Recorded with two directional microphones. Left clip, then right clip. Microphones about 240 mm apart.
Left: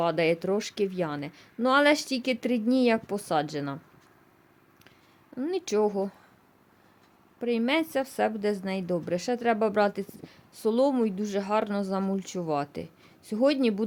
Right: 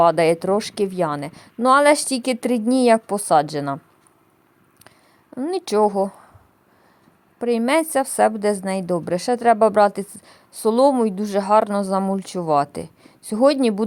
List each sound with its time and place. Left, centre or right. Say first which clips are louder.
0.0 s a woman's voice: right 10 dB; centre
5.3 s a woman's voice: right 7 dB; centre
7.3 s a woman's voice: right 8 dB; centre